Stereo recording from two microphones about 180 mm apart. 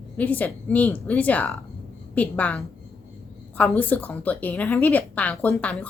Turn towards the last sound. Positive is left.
turn(degrees=5)  # may be behind; listen again after turning